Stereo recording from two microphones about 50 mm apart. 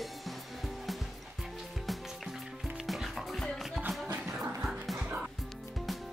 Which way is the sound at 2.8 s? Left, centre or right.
Centre.